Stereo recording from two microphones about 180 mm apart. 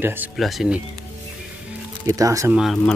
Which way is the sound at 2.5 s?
Centre (ahead or behind).